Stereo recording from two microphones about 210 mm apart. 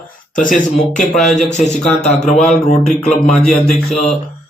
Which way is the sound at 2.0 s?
30° left (ahead or behind).